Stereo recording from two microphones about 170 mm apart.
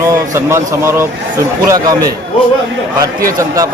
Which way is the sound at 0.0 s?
15° right (ahead or behind).